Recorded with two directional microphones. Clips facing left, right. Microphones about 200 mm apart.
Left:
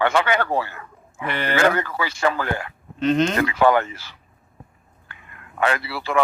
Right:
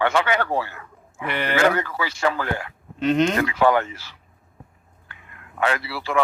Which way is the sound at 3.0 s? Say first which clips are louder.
Even; 10° right (ahead or behind).